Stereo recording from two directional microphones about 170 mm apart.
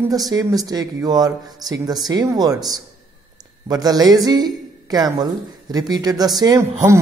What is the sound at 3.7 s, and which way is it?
A man's voice, 25° right (ahead or behind).